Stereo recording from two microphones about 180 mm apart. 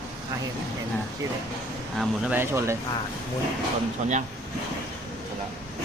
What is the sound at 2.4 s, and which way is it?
Speech, 15° right (ahead or behind).